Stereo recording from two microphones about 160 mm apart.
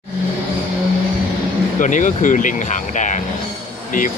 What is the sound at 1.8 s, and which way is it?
Speech, 55° left (ahead or behind).